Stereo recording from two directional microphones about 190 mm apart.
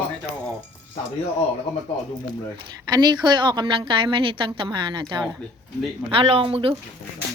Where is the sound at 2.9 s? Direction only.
20° right (ahead or behind).